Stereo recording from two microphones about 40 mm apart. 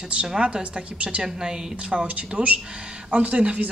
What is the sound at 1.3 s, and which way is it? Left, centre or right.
Speech, centre.